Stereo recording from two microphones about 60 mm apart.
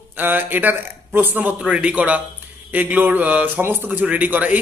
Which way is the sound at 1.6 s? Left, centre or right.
Centre.